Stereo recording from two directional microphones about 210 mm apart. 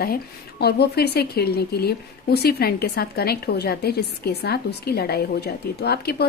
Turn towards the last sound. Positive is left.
turn(degrees=50)  # may be behind; listen again after turning